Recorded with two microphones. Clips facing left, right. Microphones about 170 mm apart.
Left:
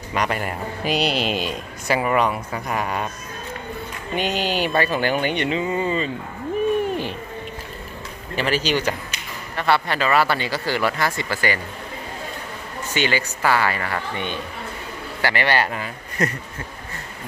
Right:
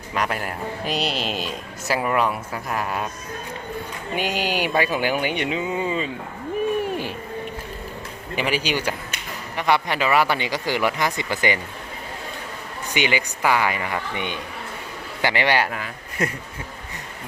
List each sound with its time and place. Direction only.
0.1 s a man's voice: centre (ahead or behind)
4.1 s speech: 10° right (ahead or behind)
8.4 s speech: 10° right (ahead or behind)
12.9 s a man's voice: 15° right (ahead or behind)